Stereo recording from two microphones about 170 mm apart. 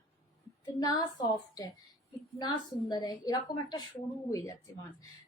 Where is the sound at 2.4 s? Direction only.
25° left (ahead or behind).